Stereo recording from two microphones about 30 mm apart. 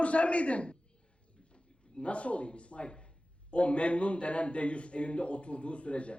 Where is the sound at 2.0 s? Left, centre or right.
Left.